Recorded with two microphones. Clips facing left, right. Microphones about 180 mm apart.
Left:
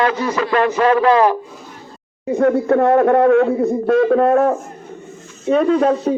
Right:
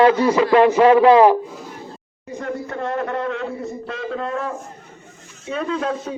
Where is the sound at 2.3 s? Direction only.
60° left (ahead or behind).